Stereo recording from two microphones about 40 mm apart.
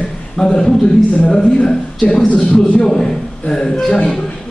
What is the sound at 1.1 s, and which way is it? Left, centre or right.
Speech, left.